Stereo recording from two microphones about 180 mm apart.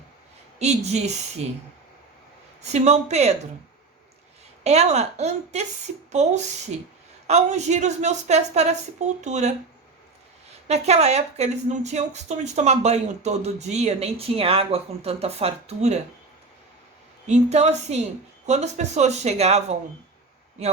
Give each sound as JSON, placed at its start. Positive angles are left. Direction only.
{"t": 0.6, "sound": "speech", "side_deg": -40}
{"t": 2.6, "sound": "speech", "side_deg": -35}
{"t": 4.6, "sound": "speech", "side_deg": -35}
{"t": 10.7, "sound": "speech", "side_deg": -35}
{"t": 17.2, "sound": "speech", "side_deg": -40}